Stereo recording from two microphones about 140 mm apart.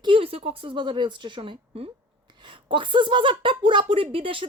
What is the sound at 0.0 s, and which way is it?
A woman's voice, 40° right (ahead or behind).